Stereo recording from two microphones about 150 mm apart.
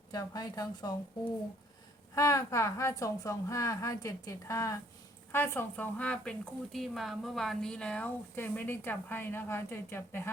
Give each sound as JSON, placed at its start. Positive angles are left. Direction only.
{"t": 0.1, "sound": "a woman's voice", "side_deg": 25}
{"t": 2.1, "sound": "a woman's voice", "side_deg": 20}